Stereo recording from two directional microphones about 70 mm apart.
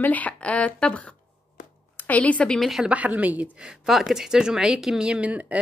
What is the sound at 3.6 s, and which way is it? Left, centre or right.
Speech, centre.